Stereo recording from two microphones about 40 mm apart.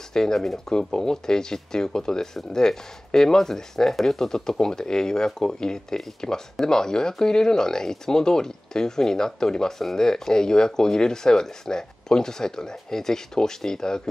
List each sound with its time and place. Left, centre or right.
0.1 s speech: centre